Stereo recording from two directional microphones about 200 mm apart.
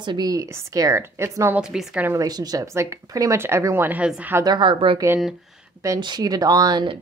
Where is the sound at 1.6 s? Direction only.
Centre (ahead or behind); by 6.9 s 20° right (ahead or behind).